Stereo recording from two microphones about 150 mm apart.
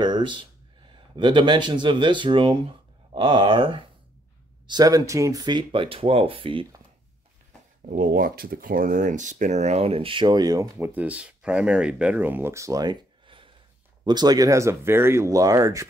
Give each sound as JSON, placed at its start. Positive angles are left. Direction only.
{"t": 0.0, "sound": "speech", "side_deg": -30}
{"t": 7.9, "sound": "speech", "side_deg": -70}
{"t": 10.9, "sound": "speech", "side_deg": -10}
{"t": 14.0, "sound": "speech", "side_deg": -25}